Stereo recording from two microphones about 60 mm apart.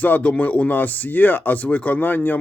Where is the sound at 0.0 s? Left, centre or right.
Left.